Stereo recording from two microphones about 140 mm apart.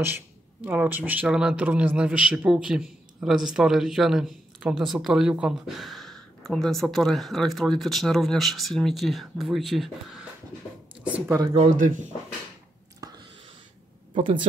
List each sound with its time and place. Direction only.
0.0 s speech: 15° right (ahead or behind)
11.4 s speech: 45° right (ahead or behind)
14.1 s speech: 35° right (ahead or behind)